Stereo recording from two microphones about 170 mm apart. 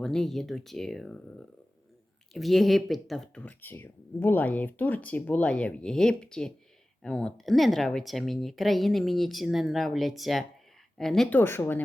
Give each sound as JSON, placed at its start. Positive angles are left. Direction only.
{"t": 0.0, "sound": "speech", "side_deg": 0}